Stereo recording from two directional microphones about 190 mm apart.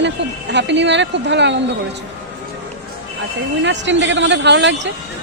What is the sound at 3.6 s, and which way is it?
A man's voice, 70° right (ahead or behind).